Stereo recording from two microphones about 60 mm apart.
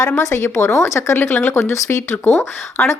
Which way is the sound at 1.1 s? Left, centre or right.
Left.